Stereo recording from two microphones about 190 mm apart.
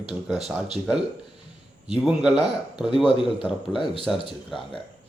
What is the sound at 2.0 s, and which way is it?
Speech, 5° right (ahead or behind).